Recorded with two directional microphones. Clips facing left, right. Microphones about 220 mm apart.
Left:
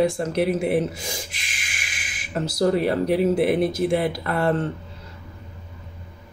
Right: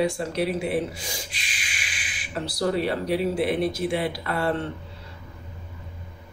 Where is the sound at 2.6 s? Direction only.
45° left (ahead or behind).